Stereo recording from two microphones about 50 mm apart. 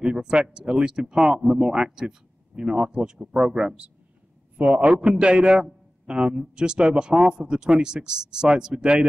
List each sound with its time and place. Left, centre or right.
0.0 s a man's voice: centre